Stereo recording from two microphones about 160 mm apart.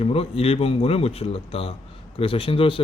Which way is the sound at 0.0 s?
40° left (ahead or behind).